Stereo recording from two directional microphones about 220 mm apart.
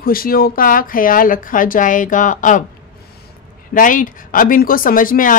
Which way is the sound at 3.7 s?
35° left (ahead or behind).